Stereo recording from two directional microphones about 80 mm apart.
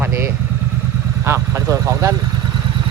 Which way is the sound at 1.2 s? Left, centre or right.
Right.